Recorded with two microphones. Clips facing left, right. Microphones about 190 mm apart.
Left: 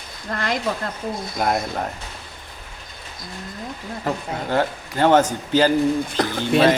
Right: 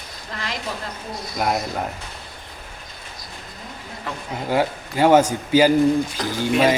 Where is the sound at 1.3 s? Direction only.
Centre (ahead or behind).